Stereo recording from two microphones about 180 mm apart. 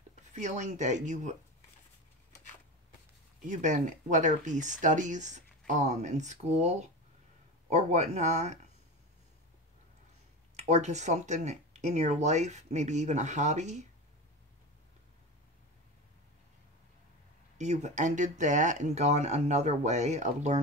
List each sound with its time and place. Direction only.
0.3 s speech: 40° right (ahead or behind)
3.4 s speech: 45° right (ahead or behind)
10.5 s speech: 40° right (ahead or behind)
17.6 s speech: 40° right (ahead or behind)